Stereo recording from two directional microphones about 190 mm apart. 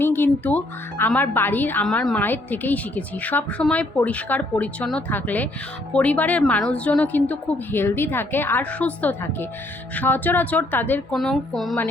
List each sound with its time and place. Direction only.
0.0 s speech: 10° left (ahead or behind)